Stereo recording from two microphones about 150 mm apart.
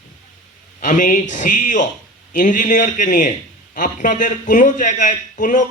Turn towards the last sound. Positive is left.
turn(degrees=60)  # may be behind; listen again after turning